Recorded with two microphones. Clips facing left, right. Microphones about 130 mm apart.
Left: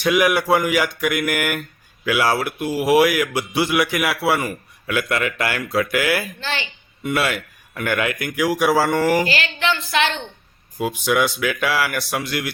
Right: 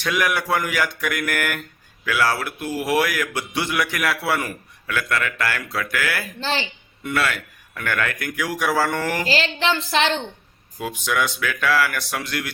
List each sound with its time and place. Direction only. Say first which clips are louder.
0.0 s a man's voice: left 5 dB; 10° left (ahead or behind)
4.9 s a man's voice: left 3 dB; 15° left (ahead or behind)
6.4 s a woman's voice: right 2 dB; 30° right (ahead or behind)
7.0 s a man's voice: left 2 dB; 15° left (ahead or behind)
9.2 s a woman's voice: even; 30° right (ahead or behind)
10.8 s a man's voice: left 4 dB; 10° left (ahead or behind)